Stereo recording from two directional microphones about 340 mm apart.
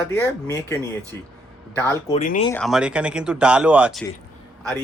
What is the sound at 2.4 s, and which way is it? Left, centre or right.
A man's voice, centre.